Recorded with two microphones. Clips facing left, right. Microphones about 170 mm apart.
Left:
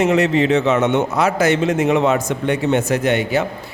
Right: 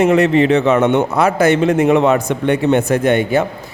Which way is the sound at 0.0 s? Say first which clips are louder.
Right 4 dB; 55° right (ahead or behind).